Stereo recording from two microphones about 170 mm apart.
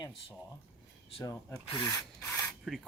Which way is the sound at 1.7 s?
20° left (ahead or behind).